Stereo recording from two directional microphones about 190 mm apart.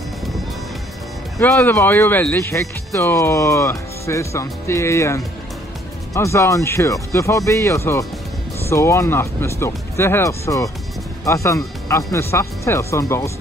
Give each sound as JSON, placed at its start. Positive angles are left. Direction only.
{"t": 1.4, "sound": "speech", "side_deg": 10}